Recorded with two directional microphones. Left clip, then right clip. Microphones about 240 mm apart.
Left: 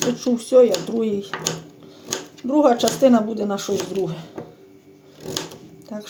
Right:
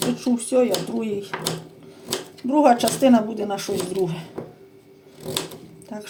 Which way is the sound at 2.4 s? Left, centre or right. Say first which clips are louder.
Even; left.